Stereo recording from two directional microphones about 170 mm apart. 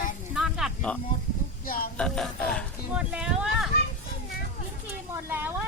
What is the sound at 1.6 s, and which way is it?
Speech, 60° left (ahead or behind).